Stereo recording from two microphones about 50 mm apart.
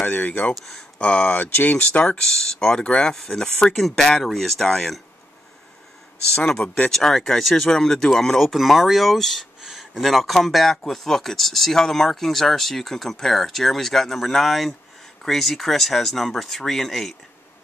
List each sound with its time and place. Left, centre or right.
0.0 s speech: left
0.6 s speech: centre
0.9 s speech: left
1.3 s speech: left
2.2 s speech: centre
6.3 s speech: centre
6.9 s speech: centre
9.6 s speech: centre